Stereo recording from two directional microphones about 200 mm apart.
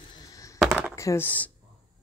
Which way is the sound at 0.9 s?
15° left (ahead or behind).